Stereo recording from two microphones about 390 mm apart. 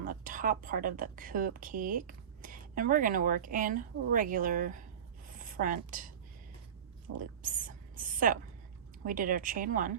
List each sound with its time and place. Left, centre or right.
0.1 s speech: right
7.2 s a sound: centre
9.0 s speech: right